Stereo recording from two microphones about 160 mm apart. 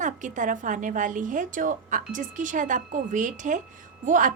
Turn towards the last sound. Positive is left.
turn(degrees=-55)  # may be behind; listen again after turning